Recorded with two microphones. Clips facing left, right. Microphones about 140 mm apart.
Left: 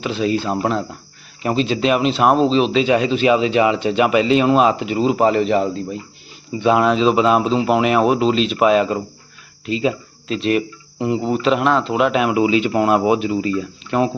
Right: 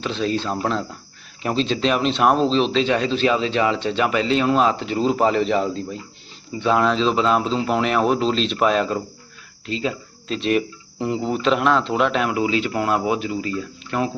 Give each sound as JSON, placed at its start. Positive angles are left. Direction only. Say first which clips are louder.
{"t": 0.0, "sound": "speech", "louder": "left 3 dB", "side_deg": 5}
{"t": 10.2, "sound": "speech", "louder": "left 2 dB", "side_deg": 0}